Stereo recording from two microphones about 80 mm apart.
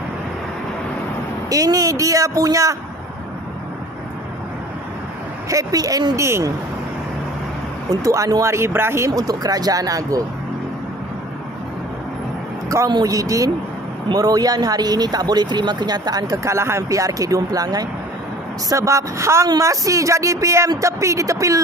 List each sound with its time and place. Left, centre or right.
1.5 s speech: right
5.5 s speech: right
6.2 s speech: right
7.9 s speech: right
9.1 s speech: right
12.6 s a man's voice: right
16.4 s speech: right
18.7 s speech: right